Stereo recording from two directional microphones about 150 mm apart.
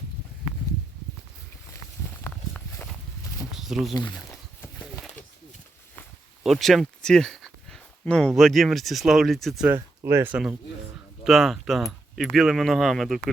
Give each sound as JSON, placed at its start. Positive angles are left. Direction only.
{"t": 2.2, "sound": "walk", "side_deg": 5}
{"t": 3.6, "sound": "speech", "side_deg": 0}
{"t": 6.4, "sound": "speech", "side_deg": 0}
{"t": 9.6, "sound": "speech", "side_deg": -15}
{"t": 11.2, "sound": "speech", "side_deg": 0}